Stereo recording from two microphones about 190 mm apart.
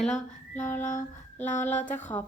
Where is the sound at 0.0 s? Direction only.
5° left (ahead or behind).